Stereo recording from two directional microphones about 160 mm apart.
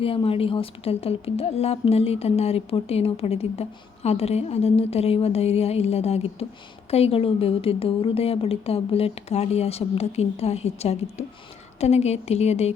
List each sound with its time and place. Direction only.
0.0 s a woman's voice: 35° left (ahead or behind)